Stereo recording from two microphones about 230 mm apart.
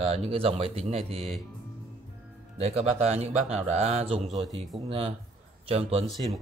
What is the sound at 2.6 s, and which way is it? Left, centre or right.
A man's voice, right.